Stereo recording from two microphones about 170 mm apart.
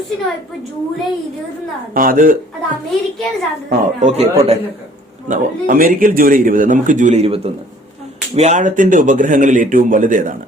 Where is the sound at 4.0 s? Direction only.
40° right (ahead or behind).